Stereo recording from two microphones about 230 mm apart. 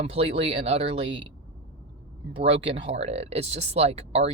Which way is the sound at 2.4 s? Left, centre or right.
Right.